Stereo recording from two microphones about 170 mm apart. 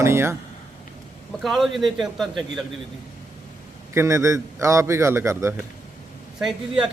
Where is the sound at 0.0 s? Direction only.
15° right (ahead or behind).